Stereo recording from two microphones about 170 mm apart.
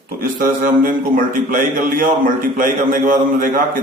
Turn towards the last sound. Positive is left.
turn(degrees=-55)  # may be behind; listen again after turning